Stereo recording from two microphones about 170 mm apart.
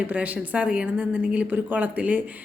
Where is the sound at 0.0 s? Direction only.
10° right (ahead or behind).